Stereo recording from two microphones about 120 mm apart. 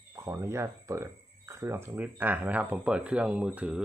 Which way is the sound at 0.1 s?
25° right (ahead or behind).